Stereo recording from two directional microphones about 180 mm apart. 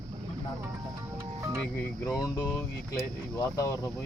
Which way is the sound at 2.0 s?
15° left (ahead or behind).